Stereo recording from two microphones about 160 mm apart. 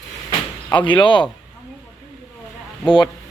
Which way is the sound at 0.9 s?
30° left (ahead or behind).